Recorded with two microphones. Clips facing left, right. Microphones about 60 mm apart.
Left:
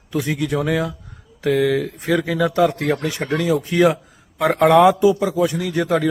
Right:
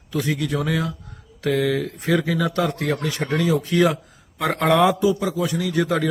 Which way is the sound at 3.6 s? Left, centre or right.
Left.